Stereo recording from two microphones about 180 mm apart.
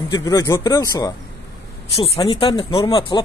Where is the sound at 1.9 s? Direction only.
30° left (ahead or behind).